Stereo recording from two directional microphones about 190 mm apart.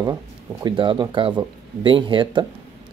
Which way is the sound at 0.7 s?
25° right (ahead or behind).